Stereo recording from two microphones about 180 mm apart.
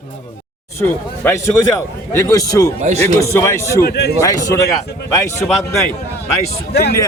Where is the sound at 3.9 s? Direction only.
65° left (ahead or behind).